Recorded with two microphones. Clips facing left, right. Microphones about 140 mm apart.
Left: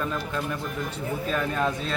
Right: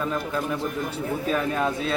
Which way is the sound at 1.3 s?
5° right (ahead or behind).